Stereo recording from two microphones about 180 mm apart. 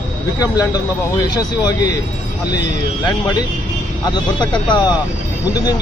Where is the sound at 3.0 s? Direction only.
20° left (ahead or behind).